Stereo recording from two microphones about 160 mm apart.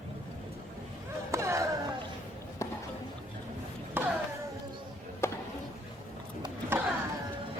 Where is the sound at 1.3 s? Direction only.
20° right (ahead or behind).